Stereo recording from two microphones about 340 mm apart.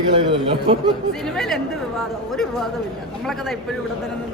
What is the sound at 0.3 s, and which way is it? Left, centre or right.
Speech, centre.